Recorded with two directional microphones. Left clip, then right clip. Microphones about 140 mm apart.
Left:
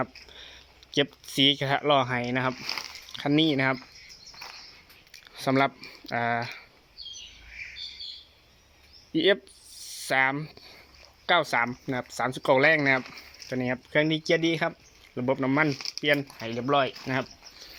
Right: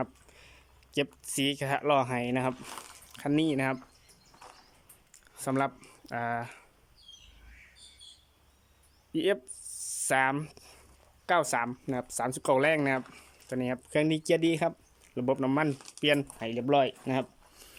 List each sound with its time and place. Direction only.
0.9 s speech: 5° right (ahead or behind)
2.0 s speech: 20° right (ahead or behind)
5.3 s speech: 5° right (ahead or behind)
9.1 s speech: 10° right (ahead or behind)
11.9 s speech: 20° right (ahead or behind)
16.6 s speech: 30° right (ahead or behind)